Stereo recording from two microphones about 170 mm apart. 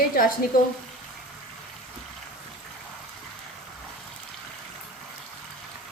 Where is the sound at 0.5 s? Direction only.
60° left (ahead or behind).